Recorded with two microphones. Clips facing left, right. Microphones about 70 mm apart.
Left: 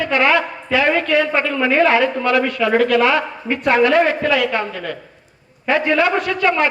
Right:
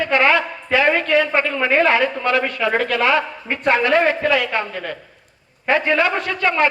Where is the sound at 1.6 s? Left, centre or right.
Right.